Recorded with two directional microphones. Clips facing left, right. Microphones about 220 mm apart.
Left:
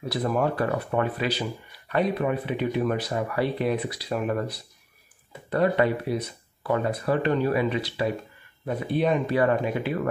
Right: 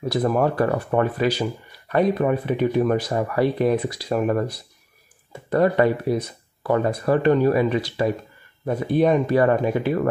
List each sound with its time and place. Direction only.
0.0 s speech: 45° right (ahead or behind)